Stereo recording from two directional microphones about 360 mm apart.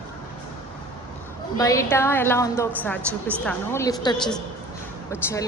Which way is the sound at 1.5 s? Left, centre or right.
Centre.